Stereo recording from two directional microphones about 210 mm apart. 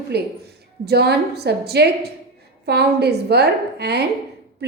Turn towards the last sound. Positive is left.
turn(degrees=-50)  # may be behind; listen again after turning